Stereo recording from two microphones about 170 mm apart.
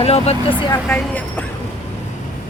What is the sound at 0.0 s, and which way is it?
Speech, 35° left (ahead or behind).